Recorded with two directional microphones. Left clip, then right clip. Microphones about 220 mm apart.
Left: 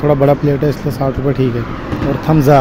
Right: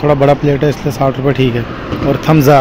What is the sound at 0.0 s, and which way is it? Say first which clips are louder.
Speech: right 2 dB; 5° left (ahead or behind).